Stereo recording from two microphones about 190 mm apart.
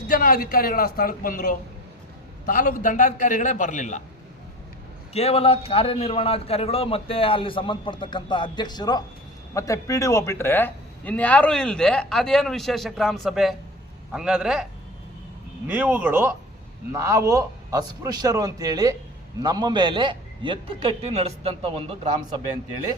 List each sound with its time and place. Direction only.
0.1 s a man's voice: 50° left (ahead or behind)
5.1 s a man's voice: 30° left (ahead or behind); by 22.1 s 30° right (ahead or behind)